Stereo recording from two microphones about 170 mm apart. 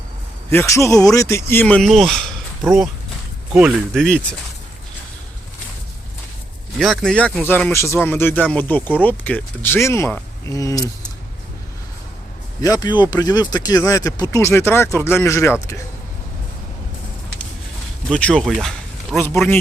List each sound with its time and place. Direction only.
0.5 s speech: 15° left (ahead or behind); by 3.8 s 5° right (ahead or behind)
3.9 s speech: 5° left (ahead or behind)
6.7 s speech: centre (ahead or behind); by 10.8 s 20° left (ahead or behind)
12.6 s speech: 20° left (ahead or behind)
18.1 s speech: 5° left (ahead or behind)